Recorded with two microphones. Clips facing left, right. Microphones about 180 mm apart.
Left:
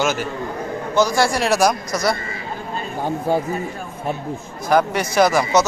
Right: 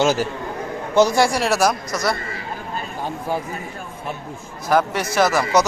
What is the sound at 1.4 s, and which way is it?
Speech, 5° right (ahead or behind).